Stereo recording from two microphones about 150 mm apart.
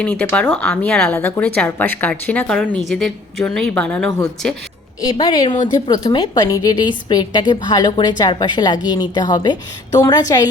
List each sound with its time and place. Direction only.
0.0 s a woman's voice: 10° left (ahead or behind)
5.1 s a woman's voice: 30° left (ahead or behind)